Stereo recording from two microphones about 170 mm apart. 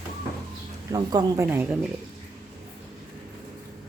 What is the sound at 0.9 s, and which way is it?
Speech, 20° right (ahead or behind).